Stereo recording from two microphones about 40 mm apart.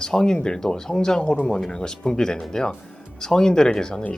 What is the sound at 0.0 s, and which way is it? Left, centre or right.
Speech, centre.